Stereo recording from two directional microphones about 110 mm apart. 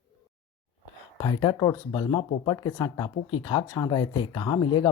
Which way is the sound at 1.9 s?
45° left (ahead or behind).